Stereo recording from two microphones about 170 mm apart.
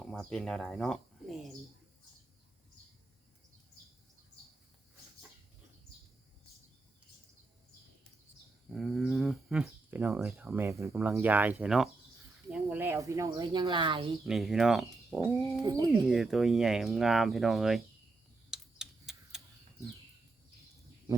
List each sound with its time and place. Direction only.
0.0 s speech: 5° left (ahead or behind)
8.7 s speech: centre (ahead or behind); by 14.1 s 30° right (ahead or behind)
14.3 s speech: centre (ahead or behind)
15.6 s speech: 20° right (ahead or behind)
15.9 s speech: centre (ahead or behind)
18.5 s typing: 5° right (ahead or behind)